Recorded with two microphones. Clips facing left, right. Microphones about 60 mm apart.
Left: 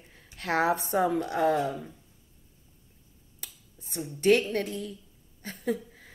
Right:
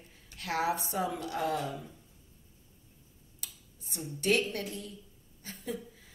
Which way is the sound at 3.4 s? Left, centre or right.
Left.